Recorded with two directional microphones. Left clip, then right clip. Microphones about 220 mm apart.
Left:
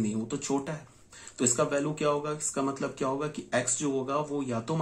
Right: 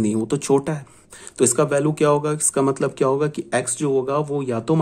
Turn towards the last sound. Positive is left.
turn(degrees=-45)  # may be behind; listen again after turning